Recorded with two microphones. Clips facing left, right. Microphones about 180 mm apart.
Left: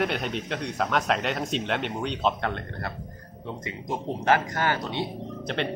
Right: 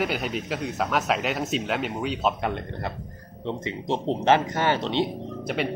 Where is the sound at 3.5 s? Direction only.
25° right (ahead or behind).